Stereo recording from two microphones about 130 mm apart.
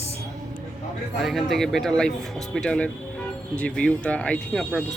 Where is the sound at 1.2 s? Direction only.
Centre (ahead or behind).